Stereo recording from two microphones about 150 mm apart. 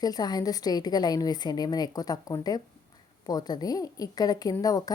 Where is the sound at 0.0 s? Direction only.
25° left (ahead or behind).